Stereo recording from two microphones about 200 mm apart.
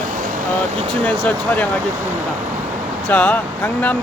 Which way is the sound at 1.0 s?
5° left (ahead or behind).